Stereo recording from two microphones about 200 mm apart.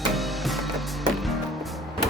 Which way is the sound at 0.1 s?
Centre (ahead or behind).